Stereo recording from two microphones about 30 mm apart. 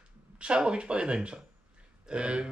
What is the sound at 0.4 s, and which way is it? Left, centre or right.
Speech, right.